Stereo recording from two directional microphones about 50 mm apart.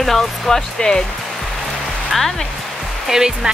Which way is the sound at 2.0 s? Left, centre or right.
Centre.